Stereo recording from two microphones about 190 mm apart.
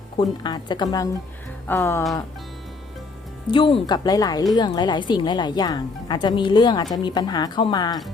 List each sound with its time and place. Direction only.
0.2 s speech: 25° left (ahead or behind)
1.6 s a sound: 15° left (ahead or behind)
3.4 s speech: 25° left (ahead or behind)